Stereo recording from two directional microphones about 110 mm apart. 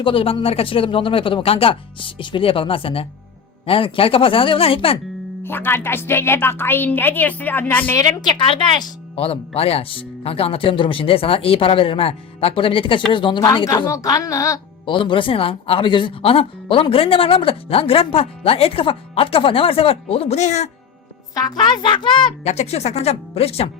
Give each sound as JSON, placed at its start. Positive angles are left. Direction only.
{"t": 0.0, "sound": "speech", "side_deg": 55}
{"t": 5.4, "sound": "a woman's voice", "side_deg": 20}
{"t": 7.9, "sound": "speech", "side_deg": 35}
{"t": 9.6, "sound": "speech", "side_deg": 65}
{"t": 13.8, "sound": "speech", "side_deg": 30}
{"t": 14.8, "sound": "speech", "side_deg": 50}
{"t": 21.3, "sound": "speech", "side_deg": 40}
{"t": 22.4, "sound": "speech", "side_deg": 75}